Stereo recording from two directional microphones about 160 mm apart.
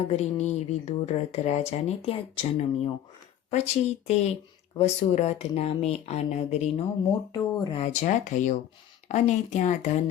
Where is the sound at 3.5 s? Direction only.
45° left (ahead or behind).